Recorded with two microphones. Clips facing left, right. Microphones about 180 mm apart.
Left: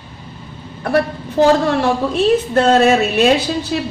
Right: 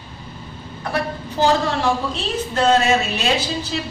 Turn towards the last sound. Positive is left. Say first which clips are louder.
# left 6 dB
turn(degrees=55)  # may be behind; listen again after turning